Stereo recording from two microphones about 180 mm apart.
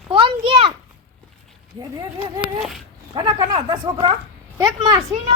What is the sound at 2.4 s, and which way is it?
Speech, 5° right (ahead or behind).